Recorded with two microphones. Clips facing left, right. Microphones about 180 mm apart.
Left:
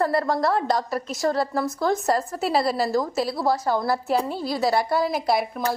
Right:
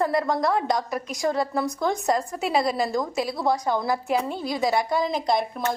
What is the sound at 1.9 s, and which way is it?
A woman's voice, centre (ahead or behind).